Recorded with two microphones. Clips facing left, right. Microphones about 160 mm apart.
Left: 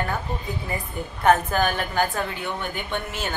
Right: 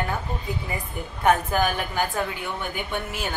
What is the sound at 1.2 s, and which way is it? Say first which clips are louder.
A woman's voice: left 1 dB; 10° right (ahead or behind).